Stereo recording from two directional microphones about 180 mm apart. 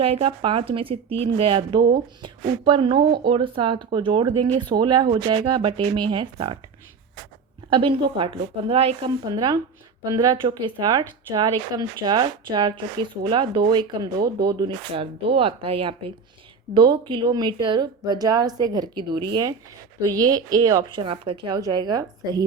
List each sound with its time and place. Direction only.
0.0 s a woman's voice: 30° right (ahead or behind)
7.7 s a woman's voice: 30° right (ahead or behind)